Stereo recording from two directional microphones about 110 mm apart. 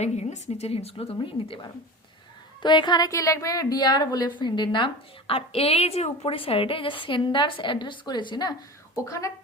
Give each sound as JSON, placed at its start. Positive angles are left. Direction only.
{"t": 0.0, "sound": "a woman's voice", "side_deg": 90}
{"t": 3.1, "sound": "a woman's voice", "side_deg": 30}
{"t": 5.3, "sound": "a woman's voice", "side_deg": 60}
{"t": 9.0, "sound": "a woman's voice", "side_deg": 30}